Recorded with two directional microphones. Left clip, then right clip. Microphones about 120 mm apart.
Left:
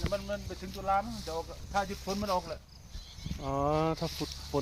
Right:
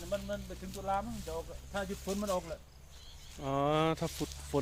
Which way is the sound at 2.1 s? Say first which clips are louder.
Left 3 dB; 70° right (ahead or behind).